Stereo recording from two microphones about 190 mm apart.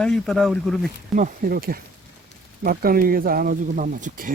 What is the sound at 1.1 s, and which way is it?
Speech, 45° right (ahead or behind).